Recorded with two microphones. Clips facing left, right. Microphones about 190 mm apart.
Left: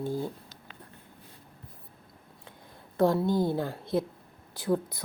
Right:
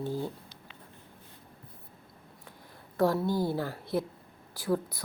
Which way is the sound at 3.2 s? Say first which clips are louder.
Left 3 dB; 20° left (ahead or behind).